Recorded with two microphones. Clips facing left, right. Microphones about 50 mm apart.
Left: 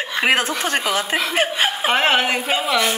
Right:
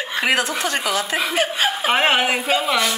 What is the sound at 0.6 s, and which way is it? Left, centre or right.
Speech, left.